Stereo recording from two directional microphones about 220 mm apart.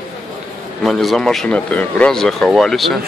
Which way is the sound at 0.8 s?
Centre (ahead or behind).